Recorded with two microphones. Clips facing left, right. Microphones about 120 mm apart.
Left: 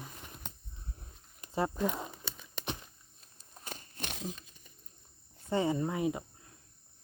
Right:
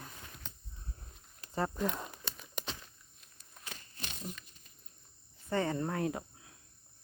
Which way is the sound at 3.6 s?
50° left (ahead or behind).